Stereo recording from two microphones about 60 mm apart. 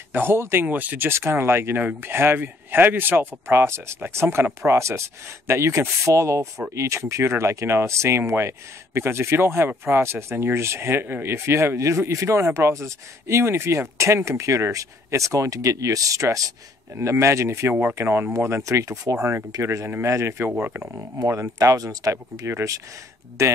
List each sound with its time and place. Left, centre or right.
0.1 s speech: right
0.7 s speech: right
16.9 s speech: right
17.6 s speech: right
18.6 s speech: right
20.5 s speech: right
21.2 s speech: right
23.4 s speech: right